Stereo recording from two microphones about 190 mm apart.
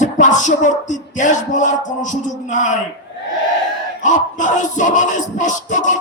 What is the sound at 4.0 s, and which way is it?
Speech, 40° left (ahead or behind).